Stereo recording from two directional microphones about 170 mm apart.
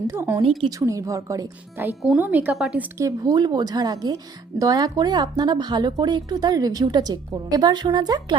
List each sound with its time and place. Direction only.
0.1 s speech: 15° right (ahead or behind)
2.0 s speech: 5° right (ahead or behind)
3.0 s speech: 20° right (ahead or behind)